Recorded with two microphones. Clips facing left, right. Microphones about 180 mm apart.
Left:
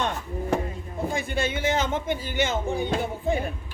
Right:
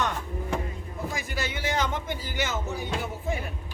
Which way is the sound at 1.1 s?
30° left (ahead or behind).